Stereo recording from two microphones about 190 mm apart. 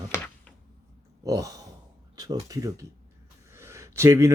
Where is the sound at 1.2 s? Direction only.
20° right (ahead or behind).